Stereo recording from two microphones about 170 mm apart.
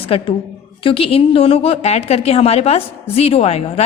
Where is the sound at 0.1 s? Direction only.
35° left (ahead or behind).